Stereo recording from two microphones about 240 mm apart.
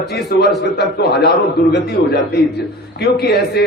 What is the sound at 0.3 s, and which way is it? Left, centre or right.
Speech, left.